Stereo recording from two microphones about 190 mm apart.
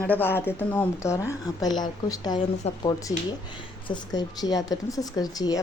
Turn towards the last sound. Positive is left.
turn(degrees=20)  # may be behind; listen again after turning